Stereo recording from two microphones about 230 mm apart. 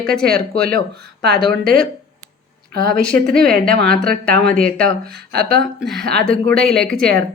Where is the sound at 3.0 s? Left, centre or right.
Centre.